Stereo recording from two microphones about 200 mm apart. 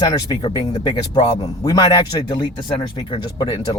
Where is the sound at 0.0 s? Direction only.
20° left (ahead or behind).